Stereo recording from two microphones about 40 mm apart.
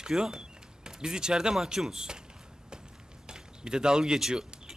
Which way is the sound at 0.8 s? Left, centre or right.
Centre.